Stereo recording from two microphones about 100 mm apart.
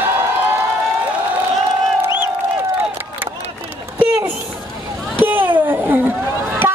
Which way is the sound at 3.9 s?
15° right (ahead or behind).